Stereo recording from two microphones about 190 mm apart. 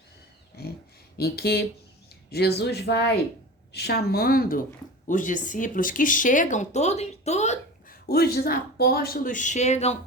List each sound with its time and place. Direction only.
0.6 s a sound: 55° left (ahead or behind)
1.2 s speech: 55° left (ahead or behind); by 7.9 s 35° left (ahead or behind)
8.0 s speech: 55° left (ahead or behind); by 10.0 s 35° left (ahead or behind)